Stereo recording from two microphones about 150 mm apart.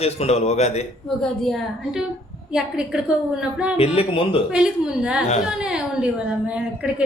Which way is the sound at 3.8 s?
40° left (ahead or behind).